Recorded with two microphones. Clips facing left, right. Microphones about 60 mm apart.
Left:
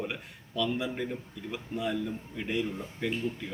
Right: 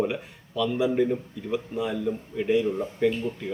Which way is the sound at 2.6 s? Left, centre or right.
Right.